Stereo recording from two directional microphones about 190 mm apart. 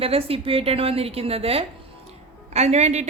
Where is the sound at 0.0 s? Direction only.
30° right (ahead or behind).